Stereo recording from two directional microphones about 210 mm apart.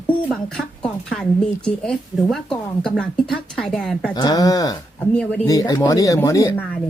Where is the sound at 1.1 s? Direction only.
5° left (ahead or behind).